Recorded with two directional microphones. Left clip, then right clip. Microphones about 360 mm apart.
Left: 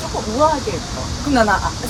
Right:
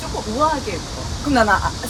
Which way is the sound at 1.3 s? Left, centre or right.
Centre.